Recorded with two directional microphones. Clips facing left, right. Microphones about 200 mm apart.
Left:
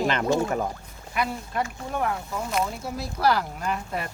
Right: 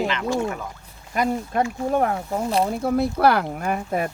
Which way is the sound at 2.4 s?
35° right (ahead or behind).